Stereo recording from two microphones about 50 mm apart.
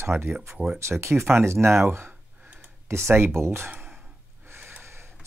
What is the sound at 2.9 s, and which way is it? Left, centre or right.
Speech, right.